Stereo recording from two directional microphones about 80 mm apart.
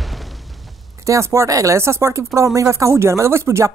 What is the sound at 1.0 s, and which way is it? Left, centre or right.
Speech, right.